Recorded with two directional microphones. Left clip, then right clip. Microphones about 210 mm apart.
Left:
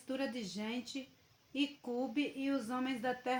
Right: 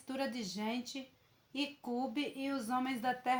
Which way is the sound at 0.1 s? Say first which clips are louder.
Right 1 dB; 30° right (ahead or behind).